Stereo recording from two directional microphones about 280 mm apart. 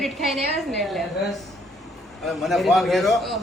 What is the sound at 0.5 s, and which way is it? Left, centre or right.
Speech, left.